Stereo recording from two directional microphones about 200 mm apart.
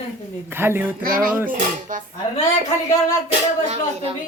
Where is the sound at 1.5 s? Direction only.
40° right (ahead or behind).